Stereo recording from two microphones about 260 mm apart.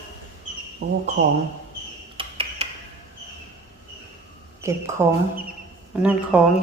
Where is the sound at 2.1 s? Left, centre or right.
Right.